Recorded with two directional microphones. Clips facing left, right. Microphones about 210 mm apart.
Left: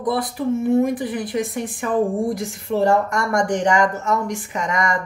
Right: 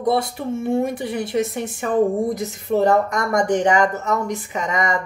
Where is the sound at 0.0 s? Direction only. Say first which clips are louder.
Right 1 dB; 25° right (ahead or behind).